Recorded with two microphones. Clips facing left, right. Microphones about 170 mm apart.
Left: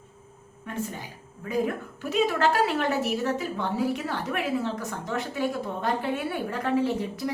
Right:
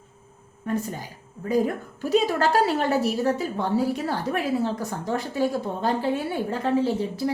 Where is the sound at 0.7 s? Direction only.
40° right (ahead or behind).